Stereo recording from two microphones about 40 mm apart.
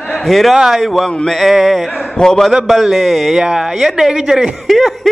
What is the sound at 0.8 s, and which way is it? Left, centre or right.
Speech, centre.